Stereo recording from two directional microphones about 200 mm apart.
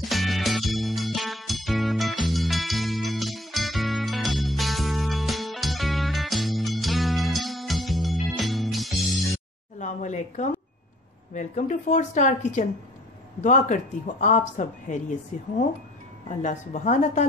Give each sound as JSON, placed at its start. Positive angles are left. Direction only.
{"t": 0.1, "sound": "music", "side_deg": 0}
{"t": 9.8, "sound": "a sound", "side_deg": 35}
{"t": 11.3, "sound": "speech", "side_deg": 35}